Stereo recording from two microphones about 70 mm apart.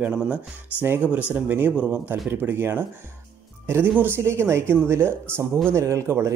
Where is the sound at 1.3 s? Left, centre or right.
Right.